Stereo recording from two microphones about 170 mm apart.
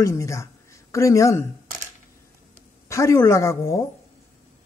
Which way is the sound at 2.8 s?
15° left (ahead or behind).